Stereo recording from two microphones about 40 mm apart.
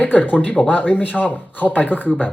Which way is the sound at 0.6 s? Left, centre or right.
Left.